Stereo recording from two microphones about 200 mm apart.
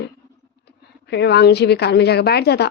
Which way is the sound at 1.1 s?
55° left (ahead or behind).